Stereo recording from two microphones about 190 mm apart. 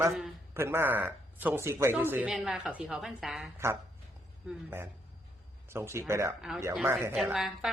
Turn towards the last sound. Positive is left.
turn(degrees=0)  # may be behind; listen again after turning